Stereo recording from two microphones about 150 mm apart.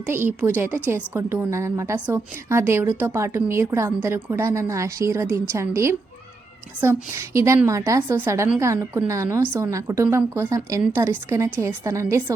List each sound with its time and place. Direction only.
0.1 s a woman's voice: 15° right (ahead or behind)